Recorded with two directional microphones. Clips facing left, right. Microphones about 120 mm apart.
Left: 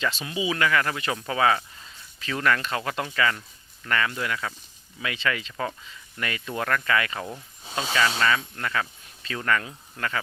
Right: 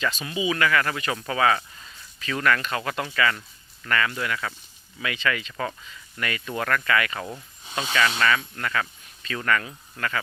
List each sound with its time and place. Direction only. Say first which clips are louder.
0.0 s speech: right 1 dB; 25° left (ahead or behind)
7.6 s speech: even; 35° left (ahead or behind)